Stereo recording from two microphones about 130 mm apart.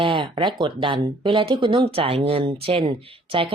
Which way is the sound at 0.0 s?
45° right (ahead or behind).